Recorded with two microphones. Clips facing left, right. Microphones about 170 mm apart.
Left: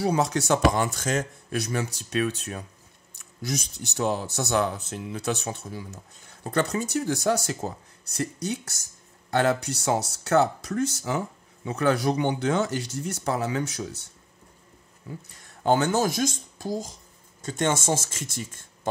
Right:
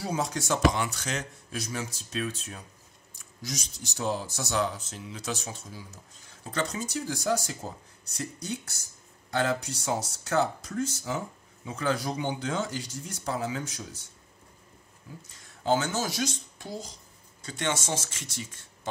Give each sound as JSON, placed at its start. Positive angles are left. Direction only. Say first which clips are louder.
{"t": 0.0, "sound": "speech", "louder": "left 7 dB", "side_deg": 70}
{"t": 0.7, "sound": "speech", "louder": "left 6 dB", "side_deg": 45}
{"t": 15.6, "sound": "speech", "louder": "left 5 dB", "side_deg": 55}